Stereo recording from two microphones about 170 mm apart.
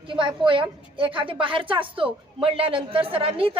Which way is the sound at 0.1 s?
30° right (ahead or behind).